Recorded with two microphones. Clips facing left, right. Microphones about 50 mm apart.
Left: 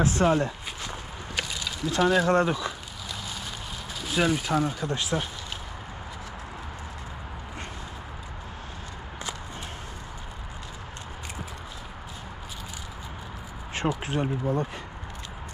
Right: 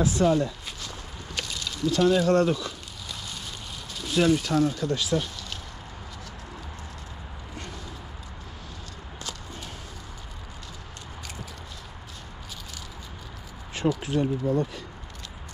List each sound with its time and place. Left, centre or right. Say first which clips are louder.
0.0 s speech: even; left
0.3 s a sound: even; left
1.3 s a sound: left 2 dB; centre
1.9 s speech: right 1 dB; centre
4.0 s speech: right 3 dB; centre
4.9 s speech: right 2 dB; left
13.8 s speech: right 3 dB; left